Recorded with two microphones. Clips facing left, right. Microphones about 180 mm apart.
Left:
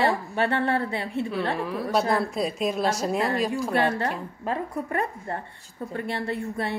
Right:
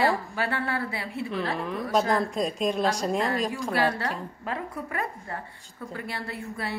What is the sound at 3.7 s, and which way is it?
A woman's voice, 30° left (ahead or behind).